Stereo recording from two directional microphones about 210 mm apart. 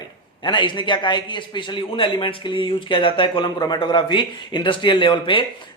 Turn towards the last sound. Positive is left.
turn(degrees=25)  # may be behind; listen again after turning